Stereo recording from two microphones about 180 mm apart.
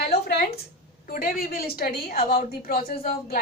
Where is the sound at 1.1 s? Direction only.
55° left (ahead or behind).